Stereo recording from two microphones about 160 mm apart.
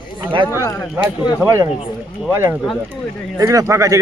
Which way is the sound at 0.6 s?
20° left (ahead or behind).